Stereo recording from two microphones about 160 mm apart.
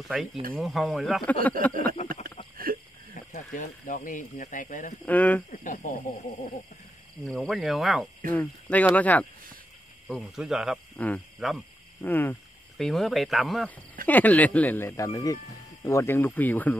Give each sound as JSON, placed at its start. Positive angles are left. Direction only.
{"t": 0.1, "sound": "cricket", "side_deg": -5}
{"t": 2.5, "sound": "a sound", "side_deg": -65}
{"t": 3.3, "sound": "speech", "side_deg": 55}
{"t": 5.0, "sound": "speech", "side_deg": 10}
{"t": 5.5, "sound": "speech", "side_deg": 55}
{"t": 7.2, "sound": "cricket", "side_deg": 0}
{"t": 8.3, "sound": "speech", "side_deg": 10}
{"t": 10.0, "sound": "cricket", "side_deg": 0}
{"t": 11.0, "sound": "speech", "side_deg": 10}
{"t": 12.7, "sound": "cricket", "side_deg": 0}
{"t": 14.0, "sound": "speech", "side_deg": 10}